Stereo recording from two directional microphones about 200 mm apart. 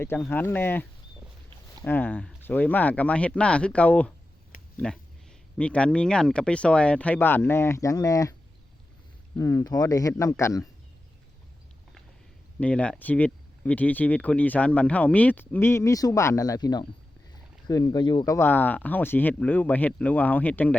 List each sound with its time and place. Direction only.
0.2 s speech: 10° left (ahead or behind)
4.5 s a sound: 45° left (ahead or behind)
5.5 s speech: 5° left (ahead or behind)
9.4 s speech: 15° left (ahead or behind)
12.5 s speech: 5° left (ahead or behind)